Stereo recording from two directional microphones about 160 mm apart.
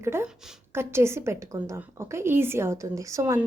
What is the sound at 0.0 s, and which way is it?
A woman's voice, 15° right (ahead or behind).